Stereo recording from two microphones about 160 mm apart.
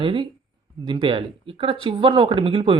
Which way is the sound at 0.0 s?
30° right (ahead or behind).